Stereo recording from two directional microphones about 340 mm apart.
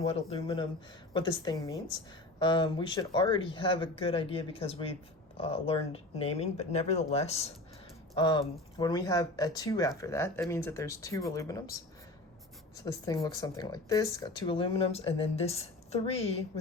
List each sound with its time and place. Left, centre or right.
0.0 s speech: centre
12.8 s speech: centre